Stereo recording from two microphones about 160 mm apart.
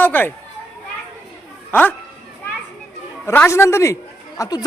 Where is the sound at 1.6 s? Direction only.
10° left (ahead or behind).